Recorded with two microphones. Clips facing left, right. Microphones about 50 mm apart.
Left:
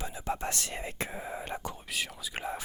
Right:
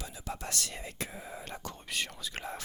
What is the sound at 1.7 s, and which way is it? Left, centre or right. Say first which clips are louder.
Speech: left 1 dB; centre.